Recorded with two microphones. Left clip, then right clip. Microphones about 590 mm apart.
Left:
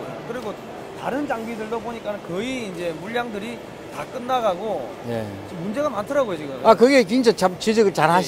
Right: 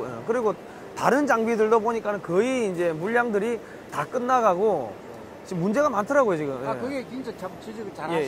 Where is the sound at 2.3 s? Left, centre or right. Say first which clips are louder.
Right 5 dB; right.